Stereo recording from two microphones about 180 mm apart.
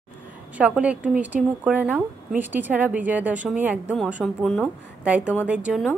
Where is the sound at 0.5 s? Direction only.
5° right (ahead or behind).